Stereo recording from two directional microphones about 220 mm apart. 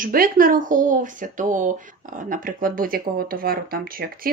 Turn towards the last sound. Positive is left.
turn(degrees=-40)  # may be behind; listen again after turning